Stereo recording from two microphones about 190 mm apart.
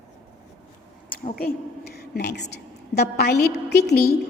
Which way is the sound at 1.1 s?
50° left (ahead or behind).